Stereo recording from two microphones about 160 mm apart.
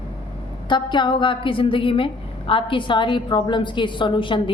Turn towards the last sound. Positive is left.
turn(degrees=30)  # may be behind; listen again after turning